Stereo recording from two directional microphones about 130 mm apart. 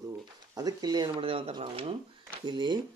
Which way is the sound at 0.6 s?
30° right (ahead or behind).